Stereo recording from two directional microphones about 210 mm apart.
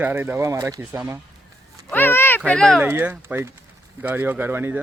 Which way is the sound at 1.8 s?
10° left (ahead or behind).